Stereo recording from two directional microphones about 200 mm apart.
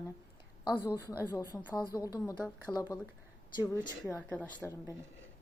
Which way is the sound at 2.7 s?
Centre (ahead or behind).